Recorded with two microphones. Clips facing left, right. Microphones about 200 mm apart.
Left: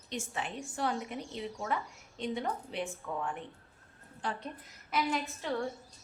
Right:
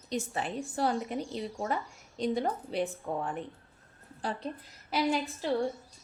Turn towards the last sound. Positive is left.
turn(degrees=-35)  # may be behind; listen again after turning